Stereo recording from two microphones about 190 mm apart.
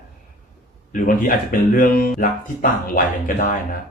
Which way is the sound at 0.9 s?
45° left (ahead or behind).